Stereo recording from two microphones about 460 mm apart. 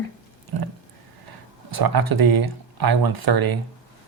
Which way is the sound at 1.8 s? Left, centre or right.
Right.